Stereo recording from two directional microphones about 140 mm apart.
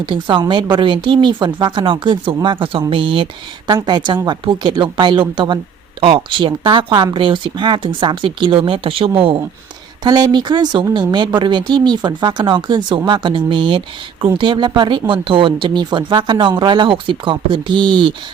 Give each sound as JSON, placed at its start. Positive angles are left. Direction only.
{"t": 0.0, "sound": "speech", "side_deg": -35}
{"t": 10.0, "sound": "speech", "side_deg": -30}